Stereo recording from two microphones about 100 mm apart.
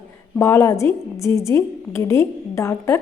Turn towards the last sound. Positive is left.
turn(degrees=30)  # may be behind; listen again after turning